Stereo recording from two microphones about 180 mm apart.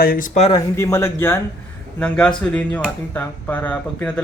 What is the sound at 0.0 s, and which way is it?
Speech, 55° left (ahead or behind).